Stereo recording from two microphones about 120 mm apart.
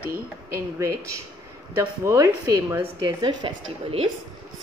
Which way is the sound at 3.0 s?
40° right (ahead or behind).